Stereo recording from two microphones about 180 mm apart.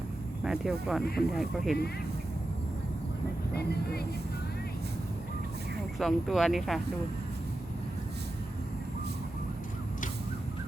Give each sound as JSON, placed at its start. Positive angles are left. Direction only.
{"t": 0.4, "sound": "speech", "side_deg": -5}
{"t": 3.5, "sound": "speech", "side_deg": 65}
{"t": 6.0, "sound": "speech", "side_deg": 0}